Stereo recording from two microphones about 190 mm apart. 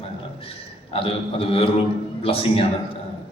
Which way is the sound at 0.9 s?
30° left (ahead or behind).